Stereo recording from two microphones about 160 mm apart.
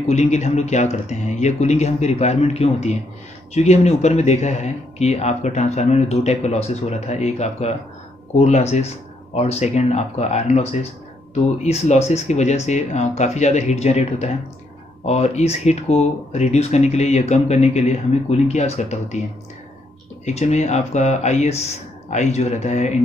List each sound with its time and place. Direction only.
0.1 s speech: 45° left (ahead or behind)
20.2 s speech: 45° left (ahead or behind)